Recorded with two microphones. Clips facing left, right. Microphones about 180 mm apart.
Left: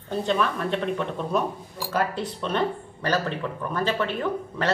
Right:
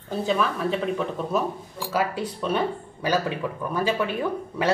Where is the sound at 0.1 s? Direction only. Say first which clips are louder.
Even; 5° right (ahead or behind).